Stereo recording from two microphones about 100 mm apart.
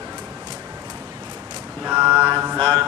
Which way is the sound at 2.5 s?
15° left (ahead or behind).